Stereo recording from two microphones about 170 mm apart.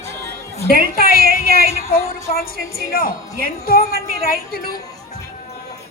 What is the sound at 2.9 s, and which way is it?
A woman's voice, 60° left (ahead or behind).